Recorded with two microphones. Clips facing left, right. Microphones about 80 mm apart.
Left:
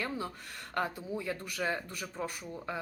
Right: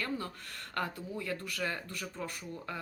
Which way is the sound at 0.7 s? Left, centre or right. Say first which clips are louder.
Left 3 dB; centre.